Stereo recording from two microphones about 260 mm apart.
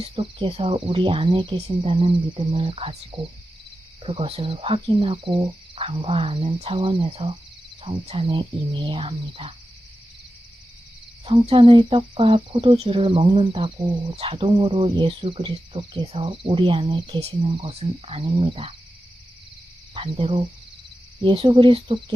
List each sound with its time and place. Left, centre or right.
0.0 s speech: centre
11.3 s speech: right
19.9 s speech: right